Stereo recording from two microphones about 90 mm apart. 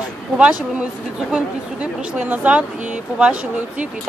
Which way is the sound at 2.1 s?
20° right (ahead or behind).